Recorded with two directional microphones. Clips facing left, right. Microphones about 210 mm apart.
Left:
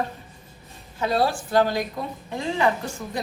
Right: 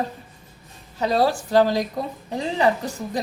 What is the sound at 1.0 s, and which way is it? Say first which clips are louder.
A woman's voice: right 3 dB; 40° right (ahead or behind).